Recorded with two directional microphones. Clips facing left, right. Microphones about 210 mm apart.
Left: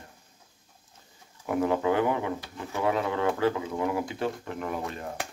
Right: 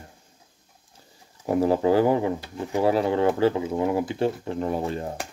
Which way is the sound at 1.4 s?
30° right (ahead or behind).